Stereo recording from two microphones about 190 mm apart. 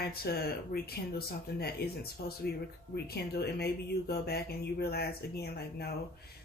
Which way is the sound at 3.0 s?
55° left (ahead or behind).